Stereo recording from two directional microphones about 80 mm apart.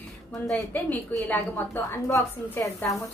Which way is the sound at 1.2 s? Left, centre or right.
Left.